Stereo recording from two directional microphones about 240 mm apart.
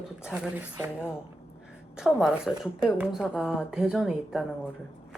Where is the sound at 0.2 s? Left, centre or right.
Centre.